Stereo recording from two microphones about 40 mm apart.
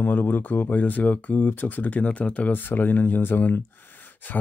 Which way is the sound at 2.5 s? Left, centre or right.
Left.